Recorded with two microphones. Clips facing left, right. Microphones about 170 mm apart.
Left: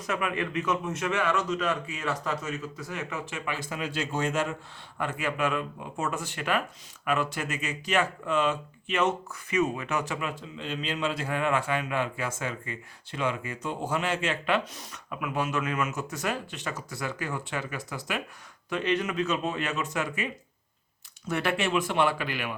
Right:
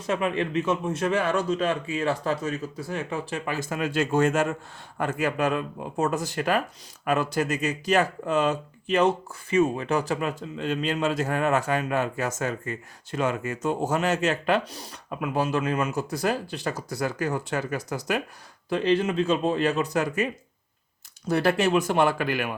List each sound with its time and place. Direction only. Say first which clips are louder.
0.0 s speech: right 4 dB; 30° right (ahead or behind); by 22.5 s 45° right (ahead or behind)